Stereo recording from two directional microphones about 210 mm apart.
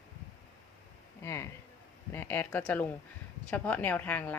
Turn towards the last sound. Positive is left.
turn(degrees=10)  # may be behind; listen again after turning